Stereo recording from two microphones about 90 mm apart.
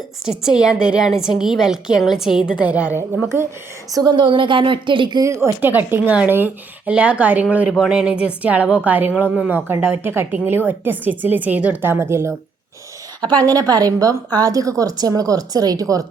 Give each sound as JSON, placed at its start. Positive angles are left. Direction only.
{"t": 0.3, "sound": "a woman's voice", "side_deg": -5}
{"t": 2.7, "sound": "speech", "side_deg": -15}
{"t": 4.1, "sound": "speech", "side_deg": -65}
{"t": 5.2, "sound": "speech", "side_deg": -30}
{"t": 11.9, "sound": "speech", "side_deg": -30}
{"t": 13.3, "sound": "a woman's voice", "side_deg": -45}